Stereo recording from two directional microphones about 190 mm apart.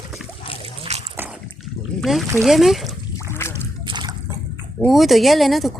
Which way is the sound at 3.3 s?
15° left (ahead or behind).